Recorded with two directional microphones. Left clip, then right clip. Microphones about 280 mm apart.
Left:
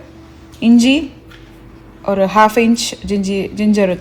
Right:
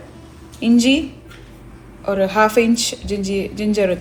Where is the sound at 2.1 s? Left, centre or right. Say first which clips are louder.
Left 4 dB; left.